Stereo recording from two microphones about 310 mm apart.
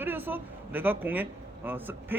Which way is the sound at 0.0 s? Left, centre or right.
Centre.